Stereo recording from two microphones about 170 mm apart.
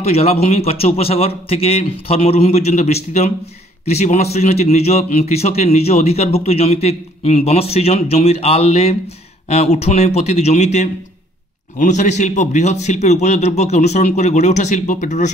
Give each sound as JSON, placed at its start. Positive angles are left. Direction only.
{"t": 0.0, "sound": "a man's voice", "side_deg": 40}